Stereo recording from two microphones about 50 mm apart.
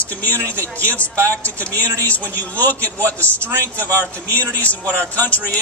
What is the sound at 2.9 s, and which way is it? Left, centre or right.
Speech, right.